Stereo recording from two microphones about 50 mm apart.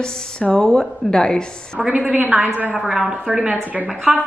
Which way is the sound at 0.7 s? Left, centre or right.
Centre.